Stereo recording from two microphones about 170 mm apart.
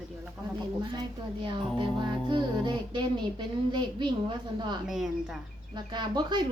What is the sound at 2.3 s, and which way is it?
A woman's voice, 25° right (ahead or behind).